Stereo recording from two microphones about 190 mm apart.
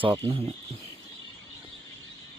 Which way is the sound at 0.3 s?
30° right (ahead or behind).